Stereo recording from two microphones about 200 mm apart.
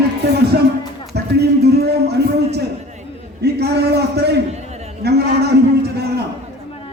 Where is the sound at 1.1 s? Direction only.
55° right (ahead or behind).